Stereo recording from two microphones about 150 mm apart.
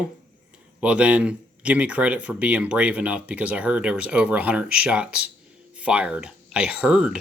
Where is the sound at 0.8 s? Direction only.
10° right (ahead or behind).